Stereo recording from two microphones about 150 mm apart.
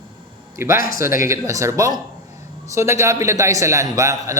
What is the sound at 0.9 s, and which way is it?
A man's voice, 20° right (ahead or behind).